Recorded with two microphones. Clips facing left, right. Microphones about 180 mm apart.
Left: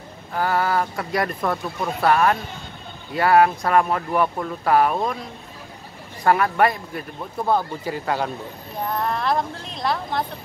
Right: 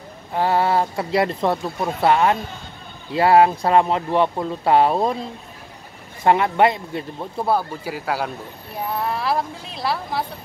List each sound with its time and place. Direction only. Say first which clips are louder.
0.3 s speech: right 3 dB; 25° right (ahead or behind)
6.2 s speech: right 2 dB; 25° right (ahead or behind)
7.4 s speech: even; 10° right (ahead or behind)